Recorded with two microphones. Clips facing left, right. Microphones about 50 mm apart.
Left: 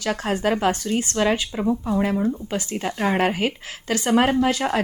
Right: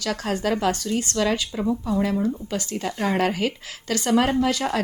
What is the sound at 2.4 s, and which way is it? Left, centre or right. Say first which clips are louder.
Speech: left 1 dB; left.